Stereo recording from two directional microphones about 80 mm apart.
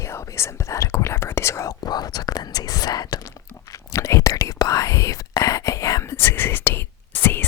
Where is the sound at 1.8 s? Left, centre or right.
Left.